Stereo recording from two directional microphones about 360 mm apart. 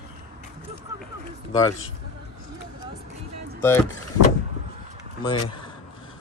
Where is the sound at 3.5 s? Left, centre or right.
Centre.